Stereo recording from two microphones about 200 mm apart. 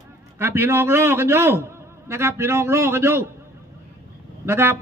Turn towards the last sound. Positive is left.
turn(degrees=-10)  # may be behind; listen again after turning